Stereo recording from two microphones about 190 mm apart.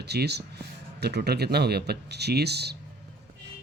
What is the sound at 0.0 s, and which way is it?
Speech, 60° right (ahead or behind).